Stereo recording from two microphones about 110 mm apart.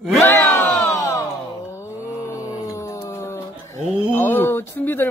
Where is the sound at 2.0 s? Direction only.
25° left (ahead or behind).